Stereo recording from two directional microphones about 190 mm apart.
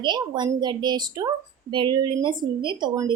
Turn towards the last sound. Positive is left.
turn(degrees=-20)  # may be behind; listen again after turning